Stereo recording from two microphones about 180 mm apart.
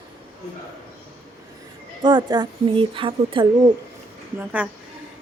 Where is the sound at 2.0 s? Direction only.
25° right (ahead or behind).